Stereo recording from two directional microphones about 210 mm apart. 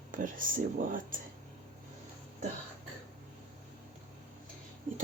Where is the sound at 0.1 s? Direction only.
40° right (ahead or behind).